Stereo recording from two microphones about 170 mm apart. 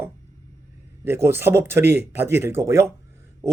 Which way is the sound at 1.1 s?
15° right (ahead or behind).